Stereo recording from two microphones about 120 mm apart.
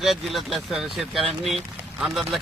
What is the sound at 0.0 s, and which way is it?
Speech, centre (ahead or behind).